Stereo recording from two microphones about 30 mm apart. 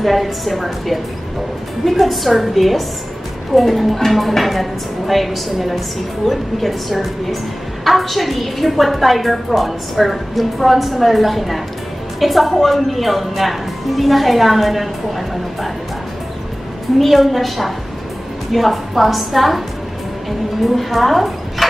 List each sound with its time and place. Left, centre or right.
0.0 s a woman's voice: centre
17.0 s a woman's voice: centre